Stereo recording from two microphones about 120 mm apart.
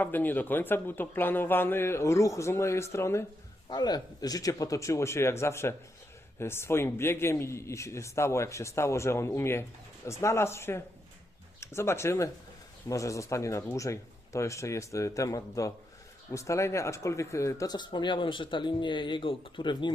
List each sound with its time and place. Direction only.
0.0 s a man's voice: 15° left (ahead or behind)
3.7 s a man's voice: 35° left (ahead or behind)